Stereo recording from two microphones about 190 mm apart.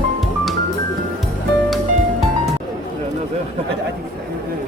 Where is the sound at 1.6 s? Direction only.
Centre (ahead or behind).